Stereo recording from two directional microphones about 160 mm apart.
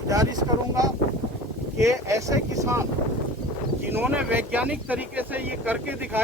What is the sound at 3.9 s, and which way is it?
Speech, 10° right (ahead or behind).